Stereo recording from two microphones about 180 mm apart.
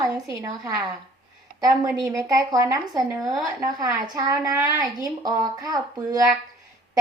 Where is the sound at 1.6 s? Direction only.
20° right (ahead or behind).